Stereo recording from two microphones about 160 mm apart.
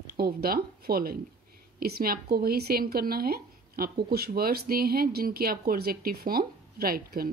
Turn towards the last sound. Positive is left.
turn(degrees=-65)  # may be behind; listen again after turning